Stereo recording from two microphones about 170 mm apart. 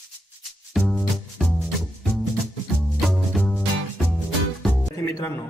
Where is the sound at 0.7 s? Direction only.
Centre (ahead or behind).